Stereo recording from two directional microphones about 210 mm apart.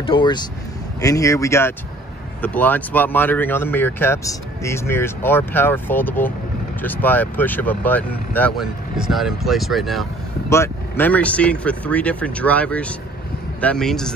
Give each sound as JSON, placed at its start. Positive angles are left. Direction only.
{"t": 0.0, "sound": "speech", "side_deg": 25}
{"t": 10.5, "sound": "speech", "side_deg": 10}